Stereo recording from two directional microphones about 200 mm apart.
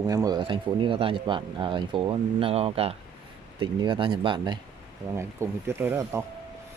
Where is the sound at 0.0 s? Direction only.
15° right (ahead or behind).